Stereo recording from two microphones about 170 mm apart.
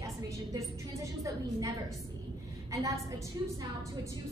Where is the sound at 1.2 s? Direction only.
20° right (ahead or behind).